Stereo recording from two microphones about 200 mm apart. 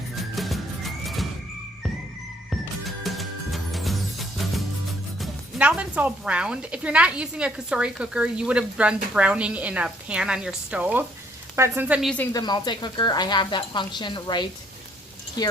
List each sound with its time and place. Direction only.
0.3 s music: centre (ahead or behind)
2.5 s music: centre (ahead or behind)
5.2 s speech: 5° right (ahead or behind)
12.3 s speech: 20° left (ahead or behind)